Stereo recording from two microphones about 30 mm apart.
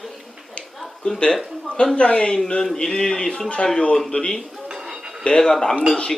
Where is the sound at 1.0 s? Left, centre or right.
Left.